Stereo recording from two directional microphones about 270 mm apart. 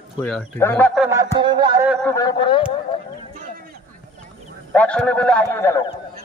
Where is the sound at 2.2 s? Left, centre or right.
Centre.